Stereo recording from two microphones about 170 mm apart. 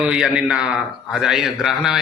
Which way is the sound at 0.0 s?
5° right (ahead or behind).